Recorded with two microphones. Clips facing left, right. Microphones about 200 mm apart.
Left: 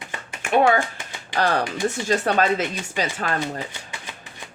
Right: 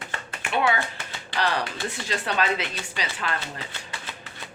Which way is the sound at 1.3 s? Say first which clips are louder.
Left 5 dB; 45° left (ahead or behind).